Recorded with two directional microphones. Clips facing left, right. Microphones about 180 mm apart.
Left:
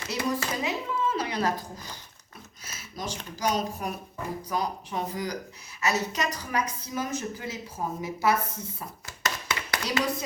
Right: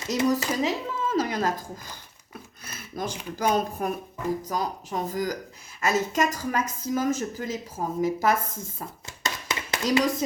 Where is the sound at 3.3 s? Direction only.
55° right (ahead or behind).